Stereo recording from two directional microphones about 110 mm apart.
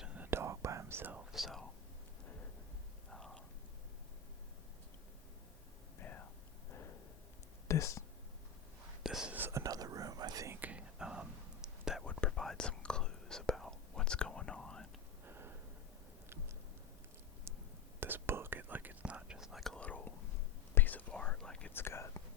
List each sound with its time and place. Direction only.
0.0 s whispering: 10° right (ahead or behind)
0.3 s whispering: 25° right (ahead or behind)
1.3 s whispering: centre (ahead or behind)
3.1 s whispering: 5° left (ahead or behind)
6.0 s whispering: 20° left (ahead or behind)
7.7 s whispering: 30° left (ahead or behind)
9.0 s whispering: 5° right (ahead or behind)
9.3 s whispering: 20° right (ahead or behind)
10.5 s whispering: 15° right (ahead or behind)
12.2 s whispering: 5° left (ahead or behind)
15.3 s a sound: 20° right (ahead or behind)
18.0 s whispering: 20° right (ahead or behind); by 21.7 s 5° left (ahead or behind)
21.7 s whispering: 20° left (ahead or behind)